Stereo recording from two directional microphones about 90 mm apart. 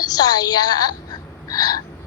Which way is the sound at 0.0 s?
45° left (ahead or behind).